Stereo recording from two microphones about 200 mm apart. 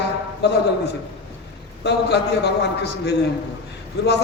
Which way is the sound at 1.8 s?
55° left (ahead or behind).